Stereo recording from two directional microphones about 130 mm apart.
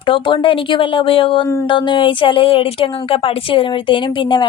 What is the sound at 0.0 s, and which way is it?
A woman's voice, 40° left (ahead or behind).